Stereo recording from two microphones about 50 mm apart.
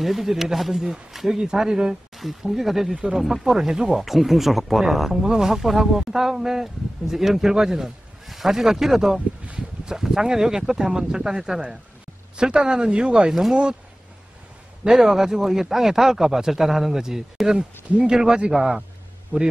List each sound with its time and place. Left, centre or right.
0.0 s speech: centre
14.9 s speech: centre
17.8 s speech: right
18.1 s speech: centre